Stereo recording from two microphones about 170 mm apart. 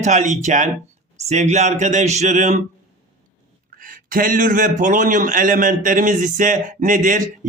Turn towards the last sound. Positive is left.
turn(degrees=-50)  # may be behind; listen again after turning